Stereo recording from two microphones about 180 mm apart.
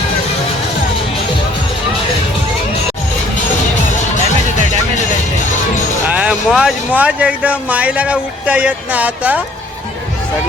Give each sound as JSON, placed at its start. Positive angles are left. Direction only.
{"t": 6.1, "sound": "speech", "side_deg": -5}